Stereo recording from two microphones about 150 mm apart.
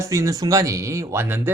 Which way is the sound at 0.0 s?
20° right (ahead or behind).